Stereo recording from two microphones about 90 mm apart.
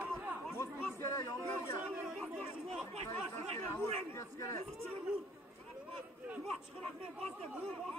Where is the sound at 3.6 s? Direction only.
30° left (ahead or behind).